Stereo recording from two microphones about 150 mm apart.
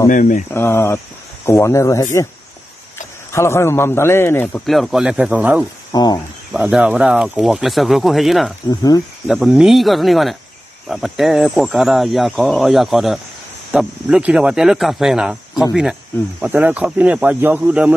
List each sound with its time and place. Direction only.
0.1 s speech: 60° left (ahead or behind)
0.5 s speech: 15° left (ahead or behind)
3.3 s speech: 20° left (ahead or behind)
4.6 s speech: centre (ahead or behind)
5.9 s a sound: 25° left (ahead or behind)
6.5 s speech: 5° right (ahead or behind)
8.6 s speech: 25° left (ahead or behind)
9.3 s speech: 5° right (ahead or behind)